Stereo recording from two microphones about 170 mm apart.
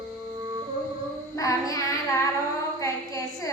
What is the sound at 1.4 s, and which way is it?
Child singing, 20° left (ahead or behind).